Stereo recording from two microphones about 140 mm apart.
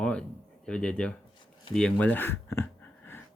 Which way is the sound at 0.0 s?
5° left (ahead or behind).